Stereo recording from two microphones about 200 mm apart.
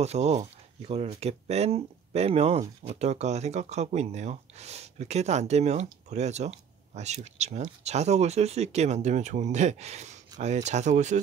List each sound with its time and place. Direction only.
0.0 s speech: 35° right (ahead or behind)